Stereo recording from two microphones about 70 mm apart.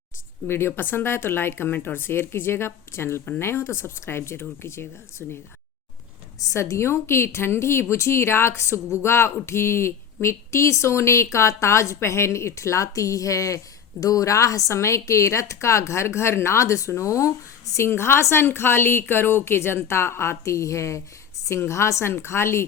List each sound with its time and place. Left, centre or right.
0.4 s a woman's voice: left
6.4 s a woman's voice: left
17.7 s a woman's voice: left